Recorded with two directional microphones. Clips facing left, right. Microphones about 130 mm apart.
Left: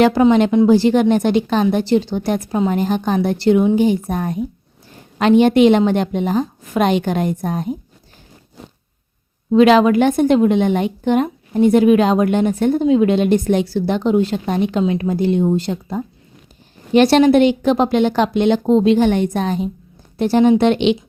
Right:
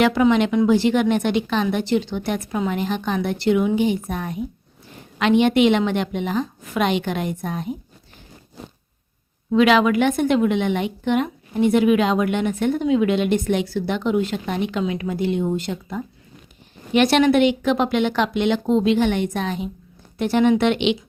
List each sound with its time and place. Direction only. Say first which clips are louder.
0.0 s a woman's voice: left 4 dB; 35° left (ahead or behind)
9.5 s a woman's voice: left 5 dB; 35° left (ahead or behind)